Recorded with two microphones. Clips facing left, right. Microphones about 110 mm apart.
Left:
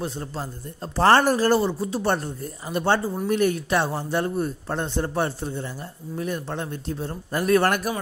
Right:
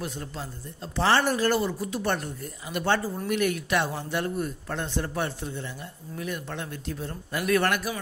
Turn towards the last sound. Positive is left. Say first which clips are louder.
# left 4 dB
turn(degrees=45)  # may be behind; listen again after turning